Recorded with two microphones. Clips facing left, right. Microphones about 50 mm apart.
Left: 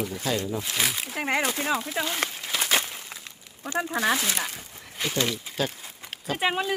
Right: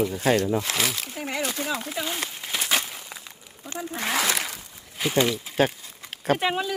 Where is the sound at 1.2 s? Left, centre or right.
Left.